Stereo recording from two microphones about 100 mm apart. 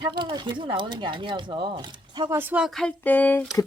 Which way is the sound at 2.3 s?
20° right (ahead or behind).